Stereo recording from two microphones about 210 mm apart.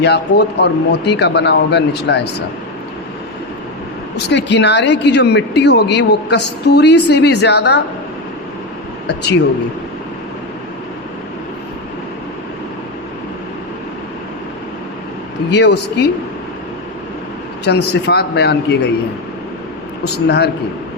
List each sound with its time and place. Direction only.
0.0 s speech: 55° left (ahead or behind)
4.3 s a woman's voice: 55° left (ahead or behind)
15.4 s speech: 55° left (ahead or behind)
17.7 s speech: 55° left (ahead or behind)
20.2 s speech: 50° left (ahead or behind)